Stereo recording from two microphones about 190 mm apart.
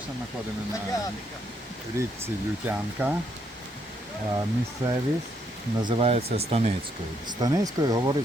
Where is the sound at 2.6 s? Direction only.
10° right (ahead or behind).